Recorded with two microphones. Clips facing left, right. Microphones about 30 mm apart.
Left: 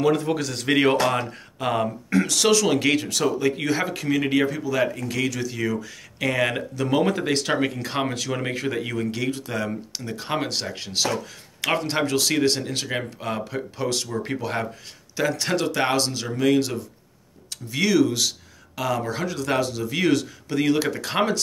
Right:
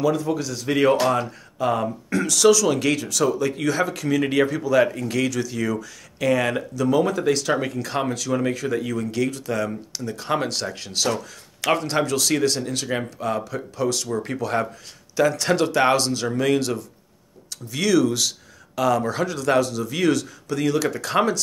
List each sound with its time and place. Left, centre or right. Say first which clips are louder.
0.0 s a man's voice: left 1 dB; left
0.7 s speech: right 1 dB; left
4.2 s speech: right 2 dB; centre
6.7 s speech: right 2 dB; left
9.1 s speech: right 3 dB; centre
13.4 s speech: right 2 dB; left
14.2 s speech: right 3 dB; centre
19.6 s speech: right 1 dB; centre